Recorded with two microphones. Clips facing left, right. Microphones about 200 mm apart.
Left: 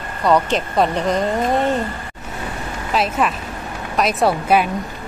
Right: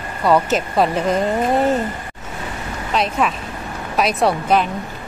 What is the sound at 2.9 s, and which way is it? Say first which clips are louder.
A woman's voice: even; 5° left (ahead or behind).